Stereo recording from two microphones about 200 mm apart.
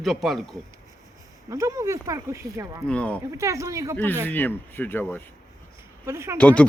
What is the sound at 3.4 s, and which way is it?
Speech, 15° right (ahead or behind).